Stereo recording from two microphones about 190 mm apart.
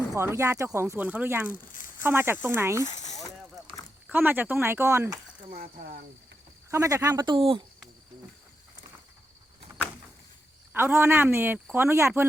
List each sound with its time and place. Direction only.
0.1 s speech: 15° right (ahead or behind)
1.5 s a sound: 45° left (ahead or behind)
2.0 s speech: 10° right (ahead or behind)
2.8 s a sound: 40° left (ahead or behind)
4.0 s speech: 10° right (ahead or behind)
5.5 s cricket: 50° right (ahead or behind)
6.7 s speech: 15° right (ahead or behind)
10.7 s speech: 10° right (ahead or behind)